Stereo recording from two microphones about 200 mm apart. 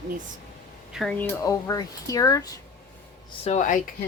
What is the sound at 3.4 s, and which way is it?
Speech, 35° left (ahead or behind).